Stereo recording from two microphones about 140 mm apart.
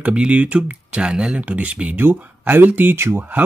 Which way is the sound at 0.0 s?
10° right (ahead or behind).